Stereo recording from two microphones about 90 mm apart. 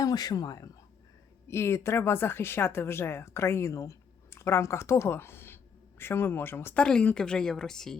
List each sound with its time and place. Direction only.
0.0 s speech: 45° left (ahead or behind)
1.5 s speech: 30° left (ahead or behind)
6.7 s a woman's voice: 10° left (ahead or behind)